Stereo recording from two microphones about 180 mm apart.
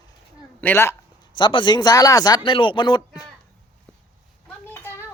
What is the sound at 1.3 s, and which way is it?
Speech, 25° left (ahead or behind).